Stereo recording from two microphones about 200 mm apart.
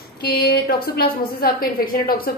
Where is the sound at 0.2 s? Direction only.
50° left (ahead or behind).